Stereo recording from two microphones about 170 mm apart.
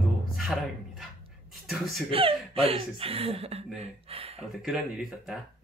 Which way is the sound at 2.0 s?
35° right (ahead or behind).